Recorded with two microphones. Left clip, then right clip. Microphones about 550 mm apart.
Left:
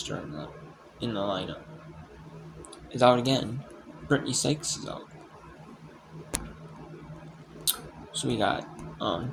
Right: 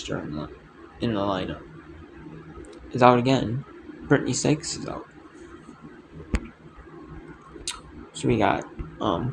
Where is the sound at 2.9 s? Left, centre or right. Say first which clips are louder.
Right 4 dB; left.